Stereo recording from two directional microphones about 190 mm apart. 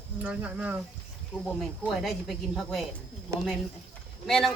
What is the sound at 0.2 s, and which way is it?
Speech, 5° right (ahead or behind).